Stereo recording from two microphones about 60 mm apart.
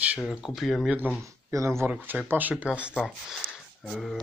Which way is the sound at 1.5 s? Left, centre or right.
Right.